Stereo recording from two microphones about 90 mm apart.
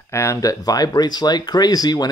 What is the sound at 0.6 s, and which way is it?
Speech, 45° left (ahead or behind).